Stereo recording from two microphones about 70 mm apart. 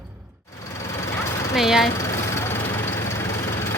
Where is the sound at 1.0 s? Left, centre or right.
Left.